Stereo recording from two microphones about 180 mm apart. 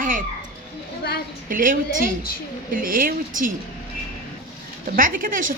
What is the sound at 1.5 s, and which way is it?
A woman's voice, 50° right (ahead or behind).